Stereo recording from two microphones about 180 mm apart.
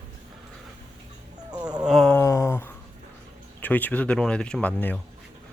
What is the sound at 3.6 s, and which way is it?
Speech, 10° left (ahead or behind).